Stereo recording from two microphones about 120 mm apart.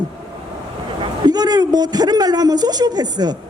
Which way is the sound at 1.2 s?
35° right (ahead or behind).